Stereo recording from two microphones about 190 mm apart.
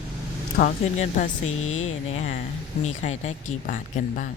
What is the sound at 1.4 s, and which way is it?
Speech, 90° left.